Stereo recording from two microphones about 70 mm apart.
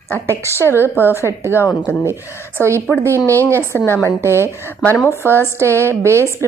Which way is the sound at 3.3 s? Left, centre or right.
Left.